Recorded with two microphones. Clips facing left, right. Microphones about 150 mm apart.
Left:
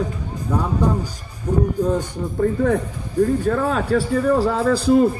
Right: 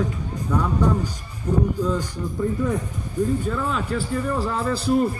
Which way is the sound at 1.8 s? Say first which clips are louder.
Left 4 dB; 55° left (ahead or behind).